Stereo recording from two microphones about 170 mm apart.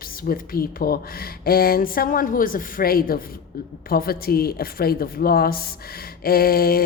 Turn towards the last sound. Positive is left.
turn(degrees=60)  # may be behind; listen again after turning